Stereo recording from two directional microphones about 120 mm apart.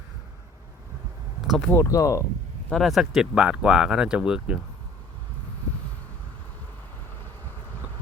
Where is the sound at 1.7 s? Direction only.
25° left (ahead or behind).